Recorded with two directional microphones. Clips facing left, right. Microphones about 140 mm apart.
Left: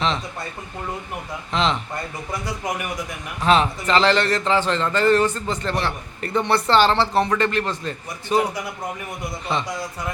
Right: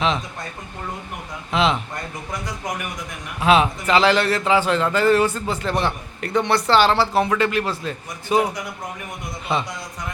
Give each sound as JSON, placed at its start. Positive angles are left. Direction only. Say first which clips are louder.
{"t": 1.5, "sound": "a man's voice", "louder": "right 2 dB", "side_deg": -10}
{"t": 3.4, "sound": "a man's voice", "louder": "right 1 dB", "side_deg": -10}
{"t": 6.2, "sound": "a man's voice", "louder": "right 1 dB", "side_deg": 0}